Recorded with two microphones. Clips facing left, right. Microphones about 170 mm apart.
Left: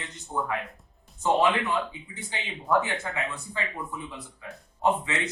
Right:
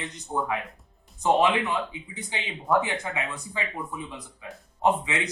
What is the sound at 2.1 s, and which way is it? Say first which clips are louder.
Speech: right 2 dB; 15° right (ahead or behind).